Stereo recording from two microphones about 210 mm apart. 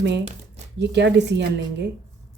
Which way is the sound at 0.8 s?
55° right (ahead or behind).